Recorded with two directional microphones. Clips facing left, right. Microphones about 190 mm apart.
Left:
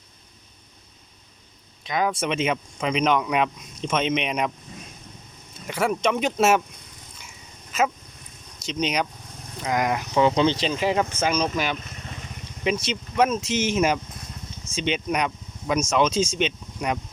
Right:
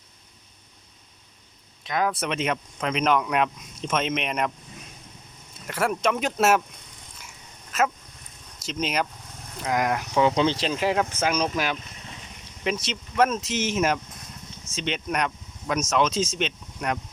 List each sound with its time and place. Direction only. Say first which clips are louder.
1.8 s speech: left 1 dB; centre (ahead or behind)
5.6 s speech: left 1 dB; centre (ahead or behind)
7.7 s dog: left 1 dB; centre (ahead or behind)
8.6 s speech: left 2 dB; 5° right (ahead or behind)